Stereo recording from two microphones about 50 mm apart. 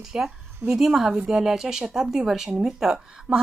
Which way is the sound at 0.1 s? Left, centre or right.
Centre.